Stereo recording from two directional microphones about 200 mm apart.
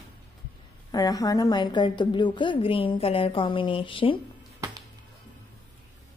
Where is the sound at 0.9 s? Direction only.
20° left (ahead or behind).